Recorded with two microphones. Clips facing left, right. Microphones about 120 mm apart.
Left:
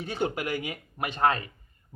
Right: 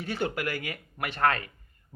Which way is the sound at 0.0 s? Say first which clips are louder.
Left 1 dB; 15° left (ahead or behind).